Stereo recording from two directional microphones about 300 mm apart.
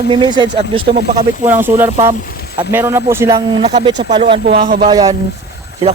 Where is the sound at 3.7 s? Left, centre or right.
Right.